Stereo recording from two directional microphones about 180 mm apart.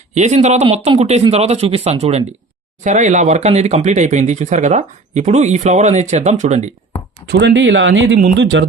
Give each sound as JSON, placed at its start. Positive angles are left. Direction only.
{"t": 0.1, "sound": "speech", "side_deg": -40}
{"t": 7.3, "sound": "speech", "side_deg": -75}